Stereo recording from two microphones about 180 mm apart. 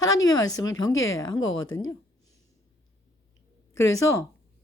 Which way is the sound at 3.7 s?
15° left (ahead or behind).